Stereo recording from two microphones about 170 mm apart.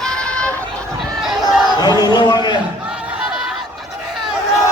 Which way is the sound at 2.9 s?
5° right (ahead or behind).